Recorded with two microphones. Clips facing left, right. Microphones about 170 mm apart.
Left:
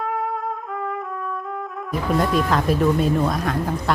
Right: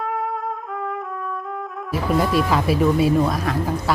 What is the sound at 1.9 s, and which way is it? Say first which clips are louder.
A woman's voice: right 1 dB; 5° right (ahead or behind).